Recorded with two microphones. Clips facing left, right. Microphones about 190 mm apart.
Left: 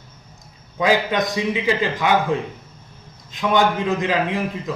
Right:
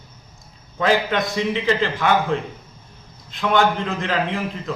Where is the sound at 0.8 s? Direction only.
15° left (ahead or behind).